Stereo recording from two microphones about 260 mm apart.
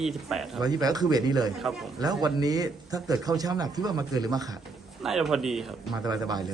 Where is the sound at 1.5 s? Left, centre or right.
Centre.